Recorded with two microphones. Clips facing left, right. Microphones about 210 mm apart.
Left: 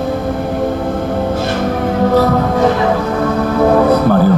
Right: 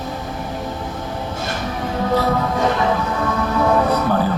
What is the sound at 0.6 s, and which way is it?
Music, 60° left (ahead or behind).